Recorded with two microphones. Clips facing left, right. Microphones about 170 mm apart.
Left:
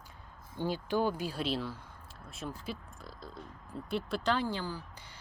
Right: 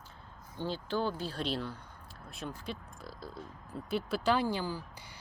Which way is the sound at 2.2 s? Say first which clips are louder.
Even; centre (ahead or behind).